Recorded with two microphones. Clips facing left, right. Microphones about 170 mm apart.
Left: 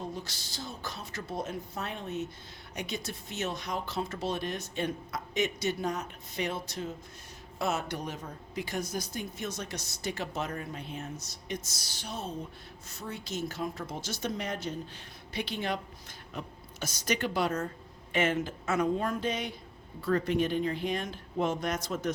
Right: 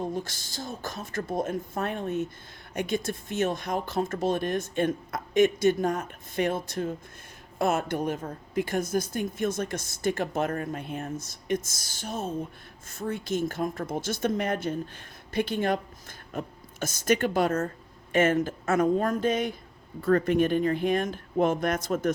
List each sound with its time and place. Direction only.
0.0 s a woman's voice: 50° right (ahead or behind)